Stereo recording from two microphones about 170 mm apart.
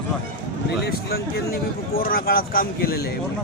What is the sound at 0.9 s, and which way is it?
Speech, 65° left (ahead or behind).